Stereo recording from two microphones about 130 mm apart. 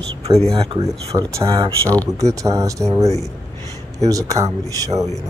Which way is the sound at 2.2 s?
25° right (ahead or behind).